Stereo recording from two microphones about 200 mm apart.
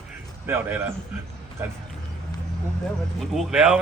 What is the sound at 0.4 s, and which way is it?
Speech, 10° right (ahead or behind).